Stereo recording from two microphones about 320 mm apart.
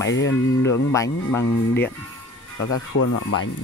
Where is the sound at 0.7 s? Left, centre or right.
Centre.